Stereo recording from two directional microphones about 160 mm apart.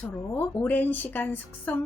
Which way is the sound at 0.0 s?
10° left (ahead or behind).